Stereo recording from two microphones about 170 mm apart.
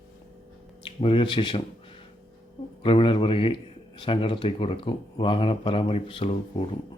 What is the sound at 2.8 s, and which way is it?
Speech, 30° left (ahead or behind).